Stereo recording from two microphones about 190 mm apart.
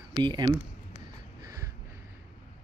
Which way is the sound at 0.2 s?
25° right (ahead or behind).